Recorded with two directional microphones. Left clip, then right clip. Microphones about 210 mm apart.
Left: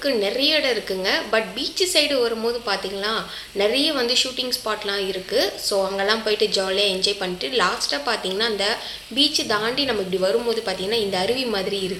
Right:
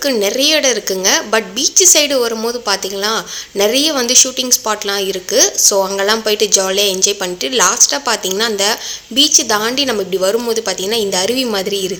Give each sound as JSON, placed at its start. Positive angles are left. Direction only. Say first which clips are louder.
{"t": 0.0, "sound": "a woman's voice", "louder": "right 7 dB", "side_deg": -50}